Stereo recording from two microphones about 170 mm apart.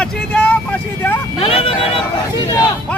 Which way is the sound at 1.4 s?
35° left (ahead or behind).